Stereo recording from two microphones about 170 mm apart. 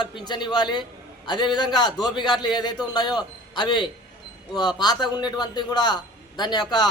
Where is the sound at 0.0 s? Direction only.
25° left (ahead or behind).